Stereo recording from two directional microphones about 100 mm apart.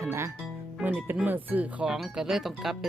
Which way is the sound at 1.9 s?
5° right (ahead or behind).